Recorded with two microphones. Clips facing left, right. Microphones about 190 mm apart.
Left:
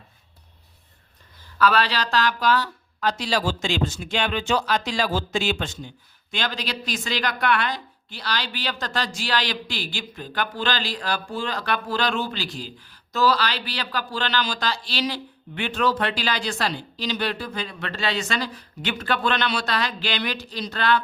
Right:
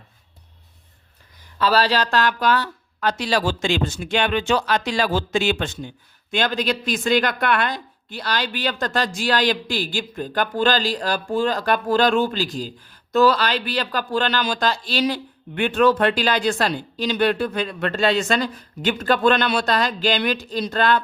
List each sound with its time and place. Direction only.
1.5 s a woman's voice: 30° right (ahead or behind); by 21.0 s 50° right (ahead or behind)